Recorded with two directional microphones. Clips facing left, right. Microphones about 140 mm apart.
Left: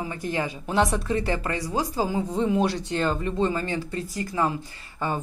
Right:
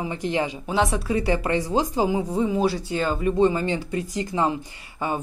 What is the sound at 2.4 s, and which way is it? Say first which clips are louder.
Speech: right 1 dB; centre (ahead or behind).